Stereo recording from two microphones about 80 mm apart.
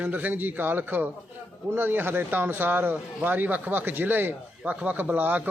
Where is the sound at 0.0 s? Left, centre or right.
Right.